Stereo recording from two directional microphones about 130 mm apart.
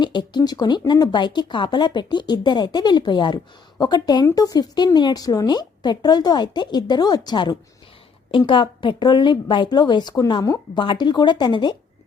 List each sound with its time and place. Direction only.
0.0 s speech: 35° left (ahead or behind)